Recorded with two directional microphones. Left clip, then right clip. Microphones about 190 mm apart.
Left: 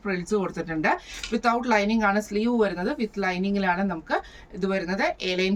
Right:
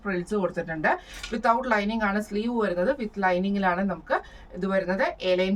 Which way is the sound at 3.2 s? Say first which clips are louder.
Right 2 dB; 20° right (ahead or behind).